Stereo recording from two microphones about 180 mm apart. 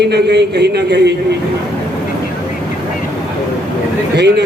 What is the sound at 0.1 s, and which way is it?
A man's voice, 65° right (ahead or behind).